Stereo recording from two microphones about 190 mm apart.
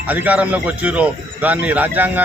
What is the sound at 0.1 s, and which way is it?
Speech, 10° right (ahead or behind).